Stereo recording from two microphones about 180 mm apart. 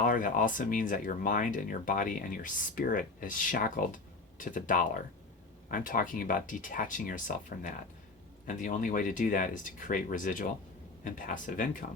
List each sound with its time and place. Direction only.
0.0 s speech: 45° left (ahead or behind)